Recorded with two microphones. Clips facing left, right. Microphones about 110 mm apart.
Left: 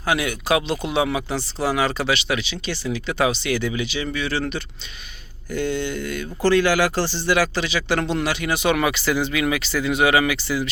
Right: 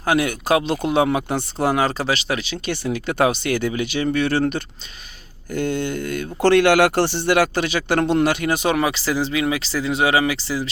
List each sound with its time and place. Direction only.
0.0 s speech: 45° right (ahead or behind)
6.4 s speech: 65° right (ahead or behind); by 10.7 s 30° right (ahead or behind)